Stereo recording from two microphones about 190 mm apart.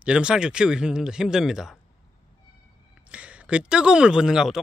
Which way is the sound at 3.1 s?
5° right (ahead or behind).